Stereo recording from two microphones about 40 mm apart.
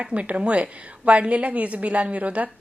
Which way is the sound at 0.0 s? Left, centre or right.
Right.